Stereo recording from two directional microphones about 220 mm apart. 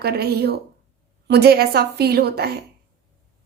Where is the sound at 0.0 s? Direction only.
45° right (ahead or behind).